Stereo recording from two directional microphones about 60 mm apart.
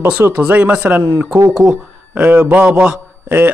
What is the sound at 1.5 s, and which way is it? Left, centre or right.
Speech, centre.